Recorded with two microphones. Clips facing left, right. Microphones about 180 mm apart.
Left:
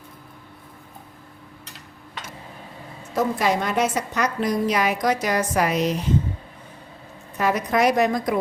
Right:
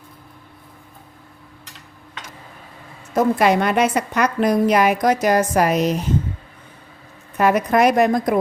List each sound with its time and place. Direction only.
3.2 s a woman's voice: 65° right (ahead or behind); by 6.1 s 45° right (ahead or behind)
7.3 s a woman's voice: 55° right (ahead or behind)